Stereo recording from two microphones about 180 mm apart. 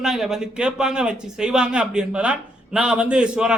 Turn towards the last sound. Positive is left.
turn(degrees=-5)  # may be behind; listen again after turning